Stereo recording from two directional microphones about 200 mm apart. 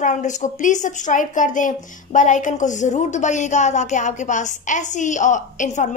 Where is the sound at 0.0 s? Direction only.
35° left (ahead or behind).